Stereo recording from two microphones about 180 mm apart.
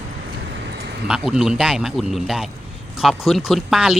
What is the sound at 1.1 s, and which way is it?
Speech, 5° right (ahead or behind).